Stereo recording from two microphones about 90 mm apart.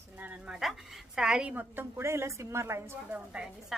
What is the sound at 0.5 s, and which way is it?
A woman's voice, 5° right (ahead or behind).